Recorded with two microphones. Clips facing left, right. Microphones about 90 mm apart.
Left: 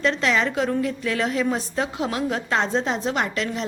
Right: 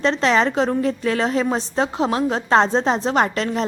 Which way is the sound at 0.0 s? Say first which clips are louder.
Right 4 dB; 30° right (ahead or behind).